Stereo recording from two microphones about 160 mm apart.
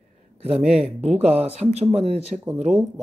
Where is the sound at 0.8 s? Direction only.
40° right (ahead or behind).